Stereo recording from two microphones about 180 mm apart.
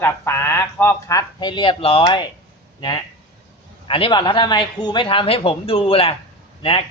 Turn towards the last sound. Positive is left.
turn(degrees=35)  # may be behind; listen again after turning